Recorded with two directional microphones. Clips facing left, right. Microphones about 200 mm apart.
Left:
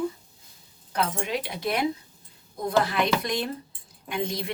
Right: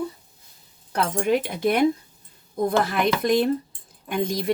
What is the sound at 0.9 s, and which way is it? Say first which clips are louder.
A woman's voice: right 6 dB; 50° right (ahead or behind).